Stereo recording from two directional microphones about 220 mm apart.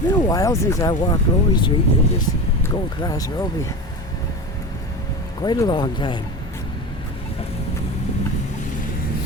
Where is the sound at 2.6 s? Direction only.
15° left (ahead or behind).